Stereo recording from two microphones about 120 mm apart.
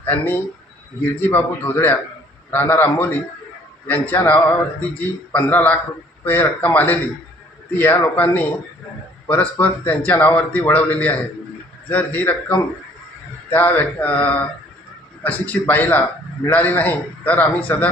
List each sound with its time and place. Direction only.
0.0 s a man's voice: 15° left (ahead or behind)